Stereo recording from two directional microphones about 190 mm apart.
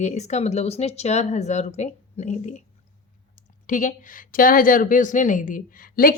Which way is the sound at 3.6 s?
45° left (ahead or behind).